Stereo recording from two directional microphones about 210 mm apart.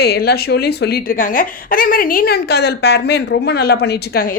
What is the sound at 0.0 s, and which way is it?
Speech, 50° left (ahead or behind).